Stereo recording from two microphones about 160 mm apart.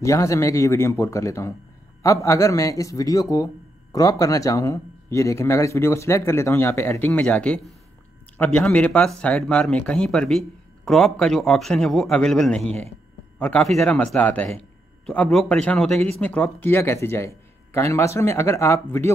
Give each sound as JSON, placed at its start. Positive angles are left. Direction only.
{"t": 0.0, "sound": "a man's voice", "side_deg": 20}